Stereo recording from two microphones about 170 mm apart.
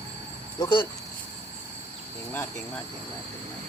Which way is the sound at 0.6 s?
25° left (ahead or behind).